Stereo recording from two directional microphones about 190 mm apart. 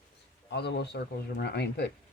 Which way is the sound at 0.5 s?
60° left (ahead or behind).